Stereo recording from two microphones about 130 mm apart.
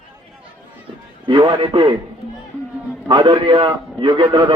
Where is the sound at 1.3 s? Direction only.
35° right (ahead or behind).